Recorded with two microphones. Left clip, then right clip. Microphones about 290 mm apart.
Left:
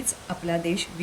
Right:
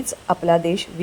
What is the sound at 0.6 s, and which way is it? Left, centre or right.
Speech, centre.